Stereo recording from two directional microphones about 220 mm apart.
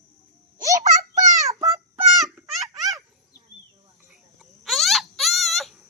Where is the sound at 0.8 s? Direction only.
15° right (ahead or behind).